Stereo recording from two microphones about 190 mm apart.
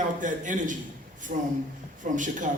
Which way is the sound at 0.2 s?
40° right (ahead or behind).